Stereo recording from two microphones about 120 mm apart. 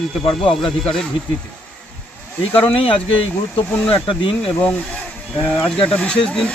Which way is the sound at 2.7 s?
50° left (ahead or behind).